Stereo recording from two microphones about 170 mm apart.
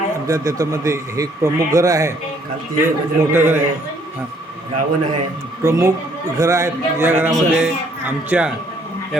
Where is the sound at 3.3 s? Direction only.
15° right (ahead or behind).